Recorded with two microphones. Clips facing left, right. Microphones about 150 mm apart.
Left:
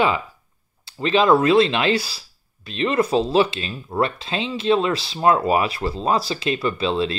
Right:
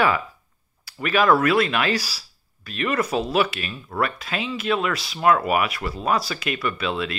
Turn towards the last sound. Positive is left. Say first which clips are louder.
# left 4 dB
turn(degrees=30)  # may be behind; listen again after turning